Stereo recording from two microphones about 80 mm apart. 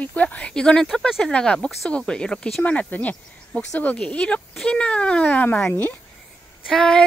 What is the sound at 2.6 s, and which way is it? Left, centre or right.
Speech, centre.